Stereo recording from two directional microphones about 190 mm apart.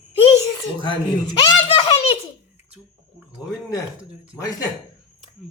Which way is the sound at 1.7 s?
30° left (ahead or behind).